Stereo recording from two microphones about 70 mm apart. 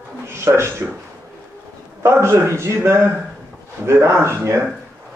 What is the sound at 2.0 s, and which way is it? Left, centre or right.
A man's voice, right.